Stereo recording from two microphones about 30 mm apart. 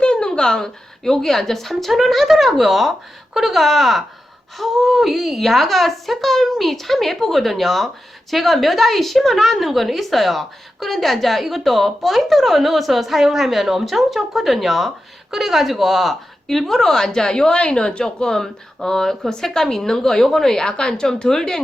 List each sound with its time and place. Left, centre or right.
0.0 s a sound: left
0.3 s speech: left
1.0 s a woman's voice: centre
16.5 s speech: centre; by 18.0 s left
18.0 s a woman's voice: centre